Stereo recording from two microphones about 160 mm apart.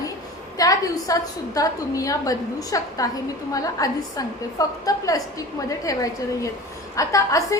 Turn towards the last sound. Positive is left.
turn(degrees=20)  # may be behind; listen again after turning